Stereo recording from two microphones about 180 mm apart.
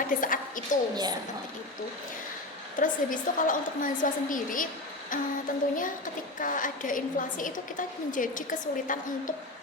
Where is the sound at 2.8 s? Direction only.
45° left (ahead or behind).